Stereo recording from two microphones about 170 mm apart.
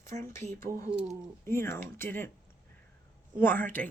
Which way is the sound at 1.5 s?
15° left (ahead or behind).